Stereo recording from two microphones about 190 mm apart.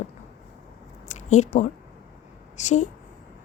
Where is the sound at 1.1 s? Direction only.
40° left (ahead or behind).